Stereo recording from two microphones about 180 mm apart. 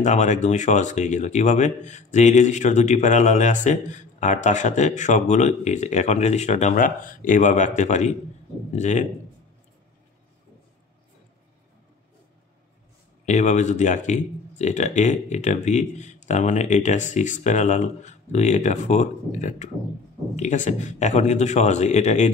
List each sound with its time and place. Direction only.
0.0 s speech: 40° left (ahead or behind)
13.2 s speech: 40° left (ahead or behind)